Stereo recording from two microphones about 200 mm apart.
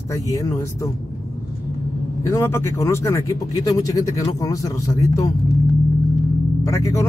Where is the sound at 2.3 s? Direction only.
15° left (ahead or behind).